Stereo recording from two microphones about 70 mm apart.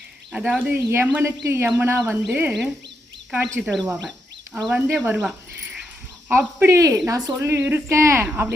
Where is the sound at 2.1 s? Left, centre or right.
Right.